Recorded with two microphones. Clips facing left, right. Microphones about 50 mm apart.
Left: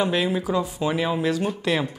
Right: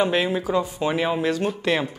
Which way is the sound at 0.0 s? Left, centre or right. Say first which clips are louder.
Right 1 dB; centre.